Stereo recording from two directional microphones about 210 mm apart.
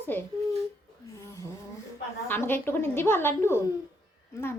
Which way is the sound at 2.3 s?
10° left (ahead or behind).